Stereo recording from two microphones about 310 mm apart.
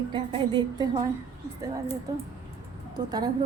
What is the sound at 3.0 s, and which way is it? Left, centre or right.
Speech, centre.